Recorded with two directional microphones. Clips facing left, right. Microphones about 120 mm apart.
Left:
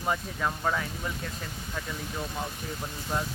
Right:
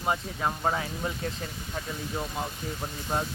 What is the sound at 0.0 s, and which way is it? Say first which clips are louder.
Speech: right 1 dB; 25° right (ahead or behind).